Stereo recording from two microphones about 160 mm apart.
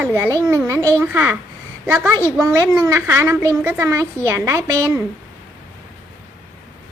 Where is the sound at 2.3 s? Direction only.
20° right (ahead or behind).